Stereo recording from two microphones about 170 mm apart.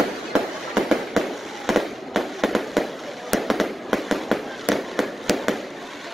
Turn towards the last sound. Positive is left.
turn(degrees=0)  # may be behind; listen again after turning